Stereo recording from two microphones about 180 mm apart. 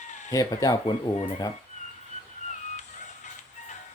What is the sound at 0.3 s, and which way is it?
Speech, 20° left (ahead or behind).